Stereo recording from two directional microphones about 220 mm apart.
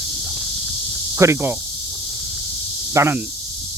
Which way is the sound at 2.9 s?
10° right (ahead or behind).